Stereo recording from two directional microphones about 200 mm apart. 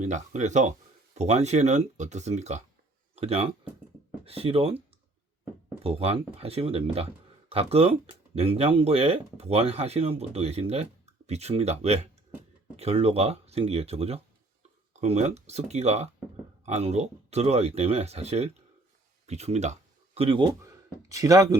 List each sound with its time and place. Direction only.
0.0 s speech: 35° right (ahead or behind)
5.8 s speech: 30° right (ahead or behind)